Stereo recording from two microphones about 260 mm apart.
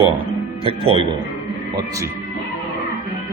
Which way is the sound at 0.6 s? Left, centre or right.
Right.